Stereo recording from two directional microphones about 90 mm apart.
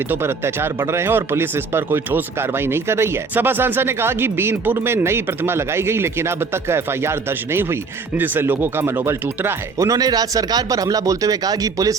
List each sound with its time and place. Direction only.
0.1 s speech: 25° right (ahead or behind)